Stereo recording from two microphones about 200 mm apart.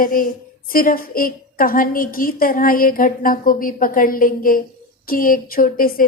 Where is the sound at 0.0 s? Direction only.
45° left (ahead or behind).